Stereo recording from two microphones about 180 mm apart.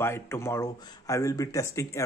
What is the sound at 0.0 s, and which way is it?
Speech, 15° left (ahead or behind).